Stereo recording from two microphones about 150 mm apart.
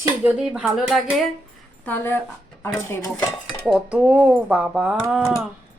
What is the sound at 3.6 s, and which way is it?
Speech, 5° right (ahead or behind).